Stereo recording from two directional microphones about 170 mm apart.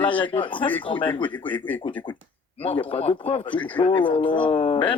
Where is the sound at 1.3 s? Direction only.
10° left (ahead or behind).